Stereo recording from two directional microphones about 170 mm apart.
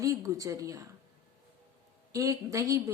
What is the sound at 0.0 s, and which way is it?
Speech, 20° right (ahead or behind).